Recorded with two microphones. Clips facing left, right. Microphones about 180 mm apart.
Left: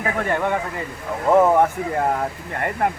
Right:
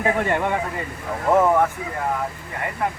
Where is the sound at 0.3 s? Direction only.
10° right (ahead or behind).